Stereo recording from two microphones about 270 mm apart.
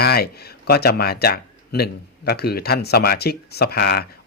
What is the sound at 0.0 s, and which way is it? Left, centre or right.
Speech, left.